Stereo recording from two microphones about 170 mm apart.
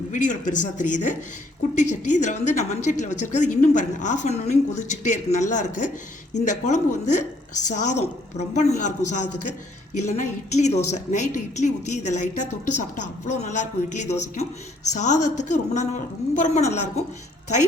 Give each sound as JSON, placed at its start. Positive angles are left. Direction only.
{"t": 0.1, "sound": "a woman's voice", "side_deg": 50}